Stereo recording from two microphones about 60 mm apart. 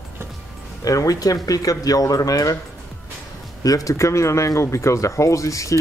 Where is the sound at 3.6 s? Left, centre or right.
Left.